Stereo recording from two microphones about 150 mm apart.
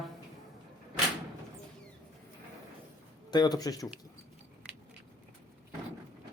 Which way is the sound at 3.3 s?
25° left (ahead or behind).